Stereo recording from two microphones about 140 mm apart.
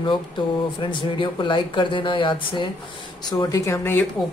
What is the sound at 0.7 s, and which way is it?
Speech, 35° left (ahead or behind).